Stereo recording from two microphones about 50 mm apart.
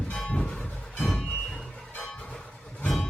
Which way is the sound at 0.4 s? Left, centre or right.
Centre.